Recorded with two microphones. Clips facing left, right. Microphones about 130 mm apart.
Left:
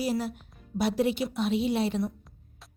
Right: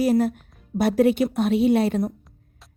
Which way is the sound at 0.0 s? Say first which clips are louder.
Right 9 dB; 50° right (ahead or behind).